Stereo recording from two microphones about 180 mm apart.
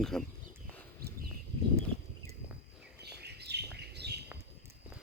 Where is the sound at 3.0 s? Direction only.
65° right (ahead or behind).